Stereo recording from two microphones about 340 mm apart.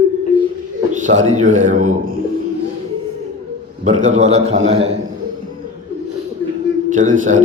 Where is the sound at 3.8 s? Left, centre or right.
Centre.